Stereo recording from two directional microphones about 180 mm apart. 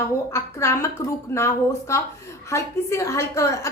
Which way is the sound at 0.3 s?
15° left (ahead or behind).